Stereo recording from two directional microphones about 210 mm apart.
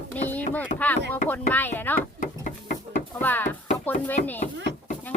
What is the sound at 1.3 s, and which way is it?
Speech, 10° left (ahead or behind).